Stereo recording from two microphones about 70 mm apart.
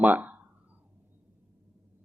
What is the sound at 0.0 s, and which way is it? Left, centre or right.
Speech, right.